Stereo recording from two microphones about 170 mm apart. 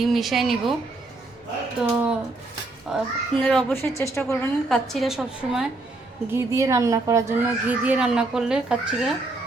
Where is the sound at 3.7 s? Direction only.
15° left (ahead or behind).